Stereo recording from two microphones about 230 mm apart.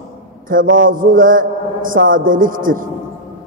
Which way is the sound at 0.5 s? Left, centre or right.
Right.